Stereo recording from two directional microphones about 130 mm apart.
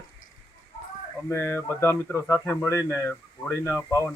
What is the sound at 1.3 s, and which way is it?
Speech, 20° left (ahead or behind).